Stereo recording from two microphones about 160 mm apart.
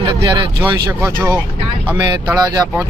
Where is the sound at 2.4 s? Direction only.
25° right (ahead or behind).